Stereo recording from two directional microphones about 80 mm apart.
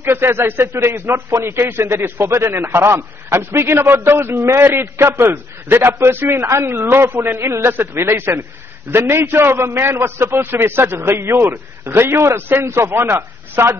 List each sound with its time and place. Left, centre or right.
0.0 s a man's voice: right